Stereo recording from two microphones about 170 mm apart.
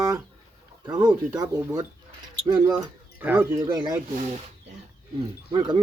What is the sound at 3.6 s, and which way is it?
Speech, 25° right (ahead or behind).